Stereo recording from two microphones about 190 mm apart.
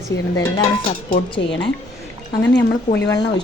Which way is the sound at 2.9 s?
20° left (ahead or behind).